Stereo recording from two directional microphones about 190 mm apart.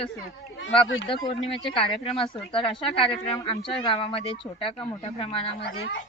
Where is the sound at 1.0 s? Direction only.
25° left (ahead or behind).